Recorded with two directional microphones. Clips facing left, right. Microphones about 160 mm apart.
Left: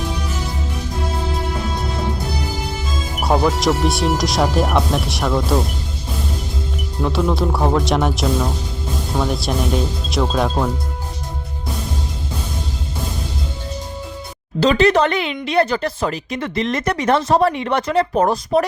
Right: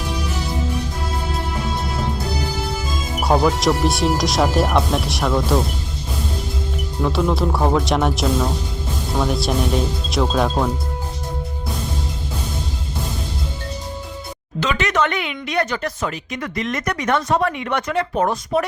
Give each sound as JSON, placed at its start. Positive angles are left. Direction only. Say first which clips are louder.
{"t": 3.2, "sound": "speech", "louder": "even", "side_deg": 0}
{"t": 7.0, "sound": "speech", "louder": "left 1 dB", "side_deg": 0}
{"t": 14.6, "sound": "speech", "louder": "left 6 dB", "side_deg": 35}